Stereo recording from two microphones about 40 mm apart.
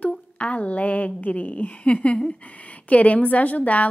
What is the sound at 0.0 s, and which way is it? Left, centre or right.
A woman's voice, left.